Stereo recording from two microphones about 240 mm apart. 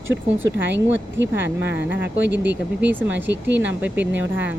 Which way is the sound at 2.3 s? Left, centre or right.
Right.